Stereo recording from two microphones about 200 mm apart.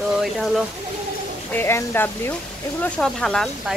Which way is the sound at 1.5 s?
10° left (ahead or behind).